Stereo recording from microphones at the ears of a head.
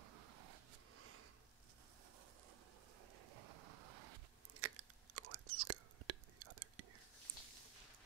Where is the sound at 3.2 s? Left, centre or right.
Right.